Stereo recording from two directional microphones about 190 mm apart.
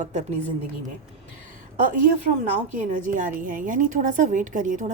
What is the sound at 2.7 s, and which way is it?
A woman's voice, 45° right (ahead or behind).